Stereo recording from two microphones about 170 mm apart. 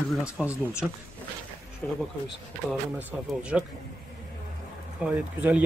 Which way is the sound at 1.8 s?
10° left (ahead or behind).